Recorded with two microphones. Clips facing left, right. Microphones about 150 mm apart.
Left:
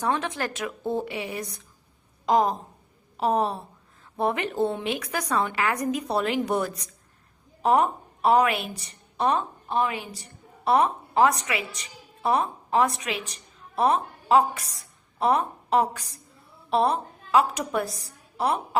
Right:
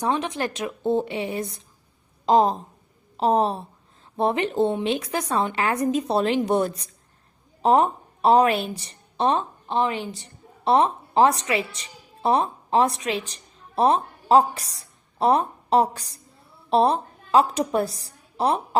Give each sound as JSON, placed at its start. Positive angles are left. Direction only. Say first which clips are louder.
{"t": 0.0, "sound": "a woman's voice", "louder": "right 2 dB", "side_deg": -15}